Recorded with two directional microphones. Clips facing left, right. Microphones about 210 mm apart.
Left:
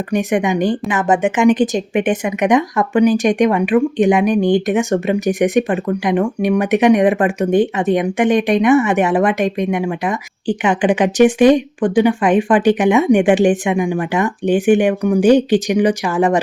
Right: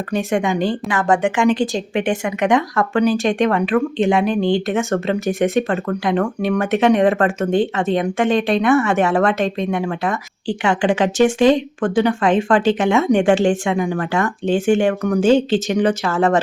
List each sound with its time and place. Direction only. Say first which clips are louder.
0.1 s a woman's voice: left 3 dB; 15° left (ahead or behind)